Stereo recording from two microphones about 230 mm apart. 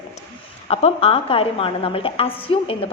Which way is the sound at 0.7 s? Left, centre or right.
Left.